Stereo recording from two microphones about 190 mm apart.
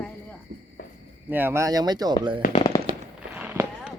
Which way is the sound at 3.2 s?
10° right (ahead or behind).